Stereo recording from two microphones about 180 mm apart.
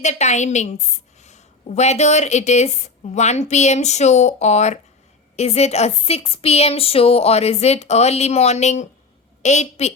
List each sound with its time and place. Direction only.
0.0 s speech: 40° left (ahead or behind)